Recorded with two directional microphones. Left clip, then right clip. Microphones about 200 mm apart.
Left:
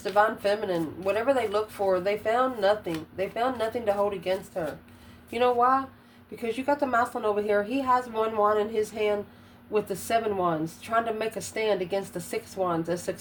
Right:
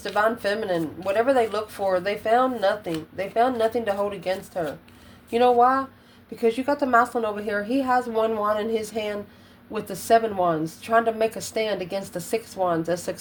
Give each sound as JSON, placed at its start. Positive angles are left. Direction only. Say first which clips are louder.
{"t": 0.0, "sound": "a woman's voice", "louder": "right 1 dB", "side_deg": -30}